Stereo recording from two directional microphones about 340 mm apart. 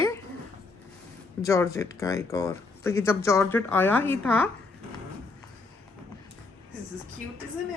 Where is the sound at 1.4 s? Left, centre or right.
Centre.